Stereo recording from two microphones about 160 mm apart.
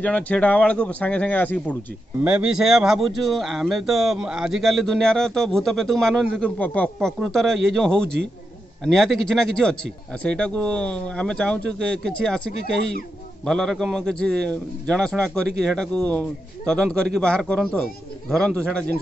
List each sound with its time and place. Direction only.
0.0 s speech: 10° left (ahead or behind)
2.2 s speech: 10° right (ahead or behind)
13.5 s speech: 5° left (ahead or behind)